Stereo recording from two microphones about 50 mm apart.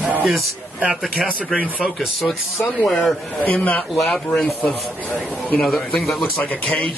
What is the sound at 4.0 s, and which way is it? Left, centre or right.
Speech, centre.